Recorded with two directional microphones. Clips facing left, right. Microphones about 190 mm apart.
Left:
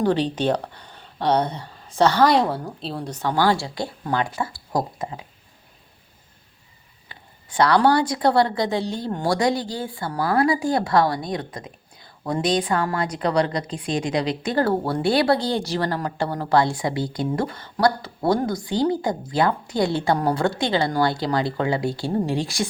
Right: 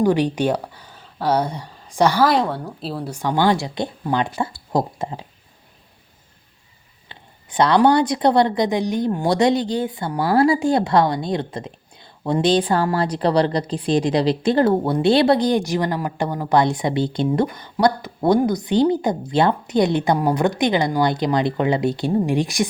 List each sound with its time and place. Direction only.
0.0 s speech: 10° right (ahead or behind)
2.2 s a woman's voice: centre (ahead or behind); by 5.2 s 25° right (ahead or behind)
7.1 s a woman's voice: 20° right (ahead or behind)